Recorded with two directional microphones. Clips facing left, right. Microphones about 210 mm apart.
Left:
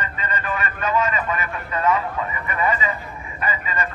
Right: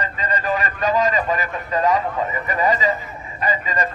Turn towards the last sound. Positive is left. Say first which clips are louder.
# right 4 dB
turn(degrees=-35)  # may be behind; listen again after turning